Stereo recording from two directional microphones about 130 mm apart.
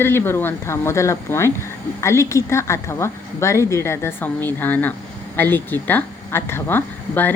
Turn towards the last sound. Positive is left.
turn(degrees=15)  # may be behind; listen again after turning